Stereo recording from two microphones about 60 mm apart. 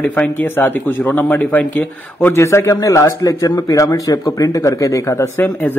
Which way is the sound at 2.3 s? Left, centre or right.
Left.